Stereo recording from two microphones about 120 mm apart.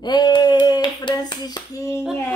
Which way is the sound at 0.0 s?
35° left (ahead or behind).